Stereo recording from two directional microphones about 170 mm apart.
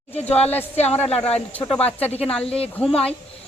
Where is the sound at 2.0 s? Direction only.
35° left (ahead or behind).